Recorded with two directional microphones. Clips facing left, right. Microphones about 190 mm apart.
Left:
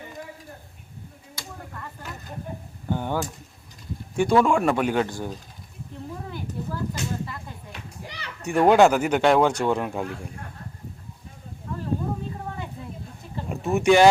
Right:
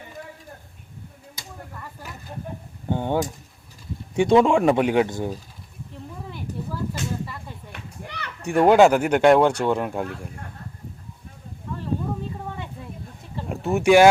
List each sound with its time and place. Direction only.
2.9 s speech: 25° right (ahead or behind)
8.0 s children playing: 55° right (ahead or behind)
8.4 s speech: 10° right (ahead or behind)
13.3 s a sound: 5° right (ahead or behind)